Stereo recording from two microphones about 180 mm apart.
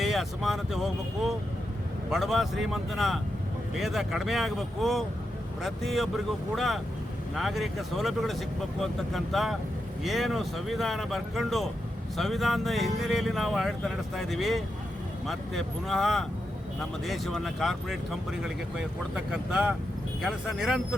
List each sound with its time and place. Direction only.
0.0 s speech: centre (ahead or behind)
2.0 s speech: centre (ahead or behind)